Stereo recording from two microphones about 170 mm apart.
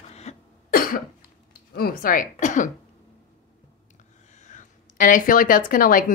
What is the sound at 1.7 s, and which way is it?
Speech, 60° left (ahead or behind).